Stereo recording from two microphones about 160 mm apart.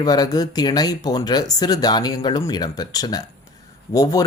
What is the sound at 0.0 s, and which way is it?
Speech, 25° left (ahead or behind).